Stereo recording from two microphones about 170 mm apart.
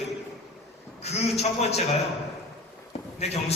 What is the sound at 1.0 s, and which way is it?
Speech, 40° left (ahead or behind).